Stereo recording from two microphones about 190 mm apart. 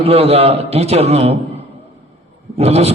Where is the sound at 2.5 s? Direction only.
35° right (ahead or behind).